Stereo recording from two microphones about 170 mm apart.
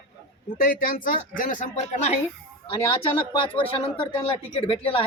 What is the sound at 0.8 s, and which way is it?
Speech, 55° left (ahead or behind).